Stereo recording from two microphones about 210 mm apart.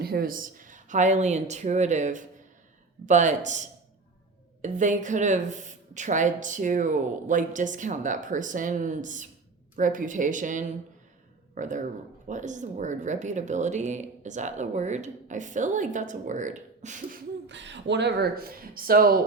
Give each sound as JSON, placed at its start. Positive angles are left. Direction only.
{"t": 0.0, "sound": "speech", "side_deg": -45}
{"t": 17.4, "sound": "speech", "side_deg": -60}